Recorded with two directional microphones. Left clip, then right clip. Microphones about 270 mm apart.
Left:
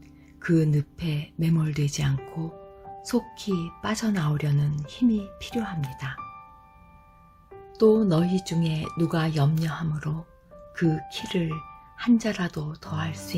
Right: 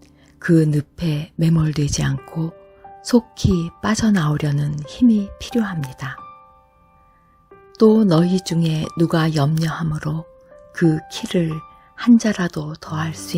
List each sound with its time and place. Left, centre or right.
0.3 s speech: right
7.8 s speech: right